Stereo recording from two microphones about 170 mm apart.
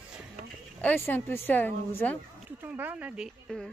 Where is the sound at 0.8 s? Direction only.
10° left (ahead or behind).